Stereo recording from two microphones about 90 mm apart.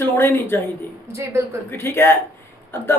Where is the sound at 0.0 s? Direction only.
25° left (ahead or behind).